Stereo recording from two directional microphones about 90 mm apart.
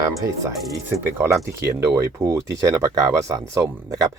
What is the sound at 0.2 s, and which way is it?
Speech, 35° right (ahead or behind).